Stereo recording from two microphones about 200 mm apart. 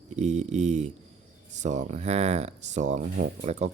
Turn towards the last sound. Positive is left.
turn(degrees=-35)  # may be behind; listen again after turning